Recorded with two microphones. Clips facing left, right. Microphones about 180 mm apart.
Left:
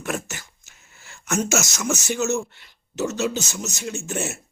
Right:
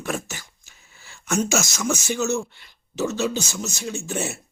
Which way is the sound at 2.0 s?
5° left (ahead or behind).